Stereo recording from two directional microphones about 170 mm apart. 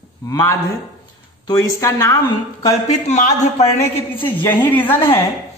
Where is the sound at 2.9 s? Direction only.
45° left (ahead or behind).